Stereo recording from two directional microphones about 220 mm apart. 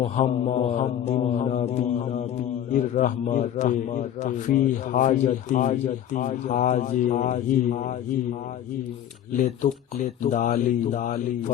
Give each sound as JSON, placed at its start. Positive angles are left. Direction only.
{"t": 0.0, "sound": "a man's voice", "side_deg": 30}
{"t": 9.4, "sound": "a man's voice", "side_deg": 35}